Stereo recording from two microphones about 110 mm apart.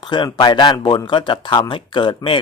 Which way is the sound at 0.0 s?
45° left (ahead or behind).